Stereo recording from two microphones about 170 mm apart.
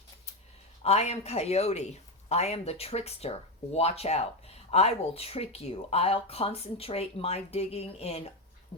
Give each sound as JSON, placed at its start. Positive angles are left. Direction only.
{"t": 0.8, "sound": "speech", "side_deg": 40}